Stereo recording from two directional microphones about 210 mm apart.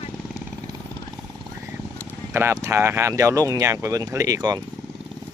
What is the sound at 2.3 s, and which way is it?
Speech, 10° right (ahead or behind).